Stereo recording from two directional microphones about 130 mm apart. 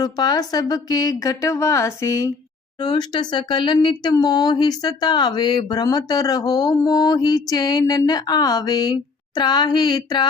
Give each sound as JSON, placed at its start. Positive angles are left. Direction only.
{"t": 0.0, "sound": "a woman's voice", "side_deg": 30}